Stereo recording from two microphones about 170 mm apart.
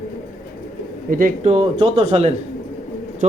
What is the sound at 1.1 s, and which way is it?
Speech, 55° right (ahead or behind).